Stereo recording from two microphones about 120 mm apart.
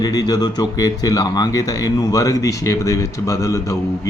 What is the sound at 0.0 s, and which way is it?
Speech, 30° left (ahead or behind).